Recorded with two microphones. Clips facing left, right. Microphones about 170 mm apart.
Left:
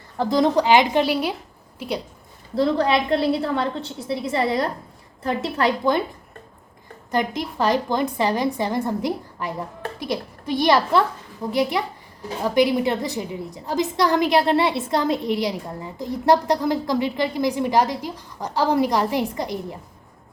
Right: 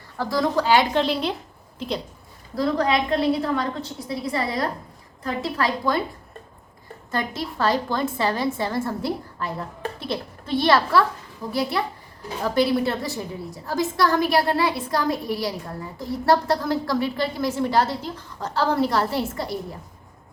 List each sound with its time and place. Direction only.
0.2 s a woman's voice: 20° left (ahead or behind)
2.6 s a woman's voice: 30° left (ahead or behind)
7.1 s a woman's voice: 15° left (ahead or behind)